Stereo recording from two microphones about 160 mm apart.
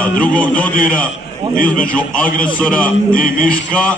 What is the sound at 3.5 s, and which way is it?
Speech, 10° left (ahead or behind).